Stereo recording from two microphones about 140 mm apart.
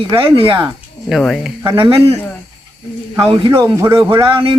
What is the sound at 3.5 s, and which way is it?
Speech, 20° right (ahead or behind).